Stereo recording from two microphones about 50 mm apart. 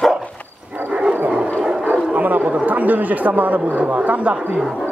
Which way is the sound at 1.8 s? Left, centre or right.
Right.